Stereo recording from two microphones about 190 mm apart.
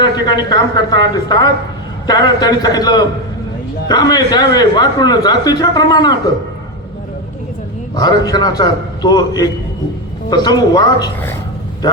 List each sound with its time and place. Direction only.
0.0 s speech: 25° left (ahead or behind)
7.9 s speech: 20° left (ahead or behind)